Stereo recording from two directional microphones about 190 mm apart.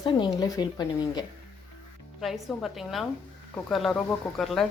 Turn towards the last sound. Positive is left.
turn(degrees=0)  # may be behind; listen again after turning